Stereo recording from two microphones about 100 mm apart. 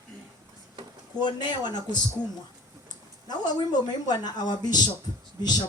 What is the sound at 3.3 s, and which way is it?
A man's voice, 45° left (ahead or behind).